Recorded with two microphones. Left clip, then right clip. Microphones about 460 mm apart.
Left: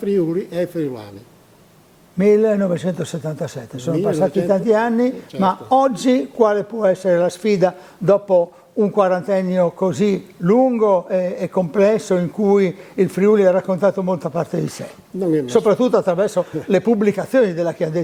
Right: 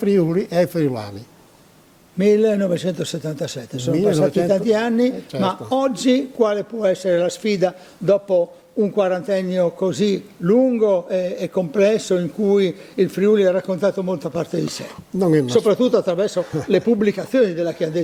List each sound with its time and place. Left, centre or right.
0.0 s speech: right
2.1 s a man's voice: centre
15.2 s speech: right
15.4 s a man's voice: centre